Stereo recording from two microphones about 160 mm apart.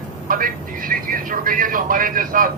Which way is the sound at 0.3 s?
60° right (ahead or behind).